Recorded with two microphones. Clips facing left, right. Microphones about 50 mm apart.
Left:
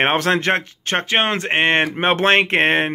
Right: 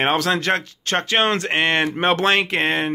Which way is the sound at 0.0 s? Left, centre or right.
Left.